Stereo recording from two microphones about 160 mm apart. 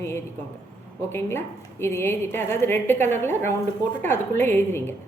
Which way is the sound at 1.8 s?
15° left (ahead or behind).